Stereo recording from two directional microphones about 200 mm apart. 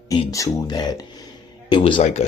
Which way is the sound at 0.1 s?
20° left (ahead or behind).